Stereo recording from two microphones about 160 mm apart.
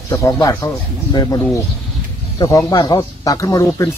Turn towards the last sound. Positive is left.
turn(degrees=20)  # may be behind; listen again after turning